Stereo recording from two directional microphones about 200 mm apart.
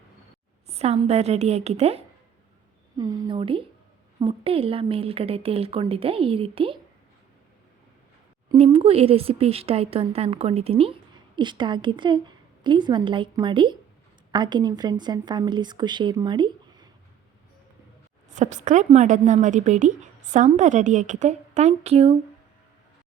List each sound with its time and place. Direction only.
0.7 s a woman's voice: 30° right (ahead or behind)
3.0 s speech: 15° right (ahead or behind)
8.4 s speech: 30° right (ahead or behind)
18.3 s a woman's voice: 35° right (ahead or behind)